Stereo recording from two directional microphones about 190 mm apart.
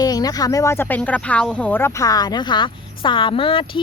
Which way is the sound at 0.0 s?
20° left (ahead or behind).